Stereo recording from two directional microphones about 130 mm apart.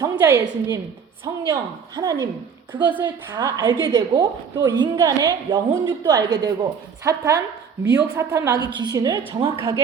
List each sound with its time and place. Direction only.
0.0 s a woman's voice: 25° right (ahead or behind)
2.0 s a woman's voice: 30° right (ahead or behind)
7.9 s a woman's voice: 10° right (ahead or behind)
8.2 s a woman's voice: 20° right (ahead or behind); by 9.7 s 40° right (ahead or behind)